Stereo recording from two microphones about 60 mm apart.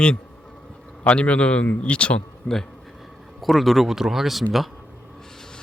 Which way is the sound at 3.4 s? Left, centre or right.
Centre.